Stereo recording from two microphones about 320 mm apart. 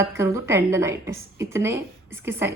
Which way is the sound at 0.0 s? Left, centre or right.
Centre.